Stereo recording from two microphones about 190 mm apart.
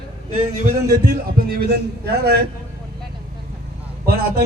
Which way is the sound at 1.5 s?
55° right (ahead or behind).